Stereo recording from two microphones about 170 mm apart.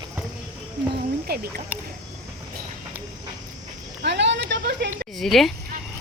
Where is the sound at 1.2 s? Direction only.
65° right (ahead or behind).